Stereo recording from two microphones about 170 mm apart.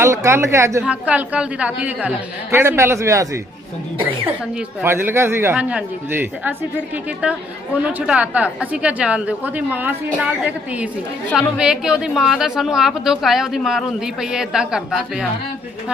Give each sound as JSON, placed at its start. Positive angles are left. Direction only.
{"t": 0.0, "sound": "a woman's voice", "side_deg": -15}
{"t": 4.8, "sound": "a woman's voice", "side_deg": -15}
{"t": 7.8, "sound": "a woman's voice", "side_deg": -5}